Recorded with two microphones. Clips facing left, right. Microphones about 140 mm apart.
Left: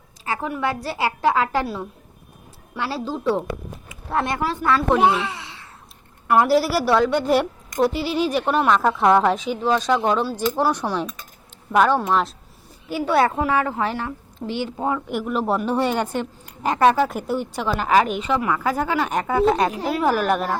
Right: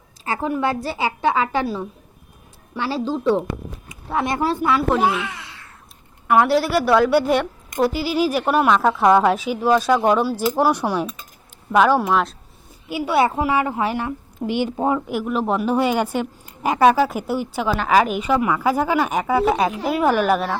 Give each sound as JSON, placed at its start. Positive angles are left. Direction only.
{"t": 0.4, "sound": "a woman's voice", "side_deg": -30}
{"t": 0.9, "sound": "a woman's voice", "side_deg": 0}
{"t": 4.9, "sound": "speech", "side_deg": 30}
{"t": 6.2, "sound": "a woman's voice", "side_deg": 0}
{"t": 15.1, "sound": "a woman's voice", "side_deg": 0}